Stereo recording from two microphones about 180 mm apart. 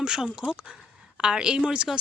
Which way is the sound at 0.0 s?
5° right (ahead or behind).